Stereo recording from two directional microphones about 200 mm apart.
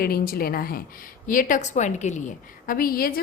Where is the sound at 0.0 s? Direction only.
50° left (ahead or behind).